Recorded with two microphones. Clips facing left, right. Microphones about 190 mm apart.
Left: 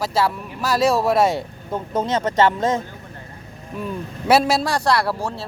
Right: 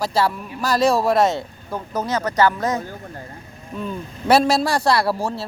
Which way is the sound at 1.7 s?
25° left (ahead or behind).